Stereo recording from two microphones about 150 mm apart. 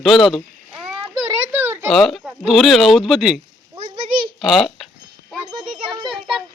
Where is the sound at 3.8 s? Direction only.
35° right (ahead or behind).